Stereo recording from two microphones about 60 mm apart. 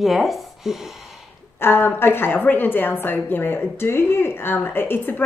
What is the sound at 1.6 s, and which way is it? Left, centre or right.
A woman's voice, left.